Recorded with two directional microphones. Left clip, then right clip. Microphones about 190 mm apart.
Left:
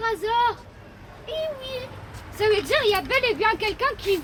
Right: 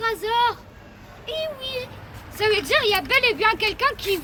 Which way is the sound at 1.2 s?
35° left (ahead or behind).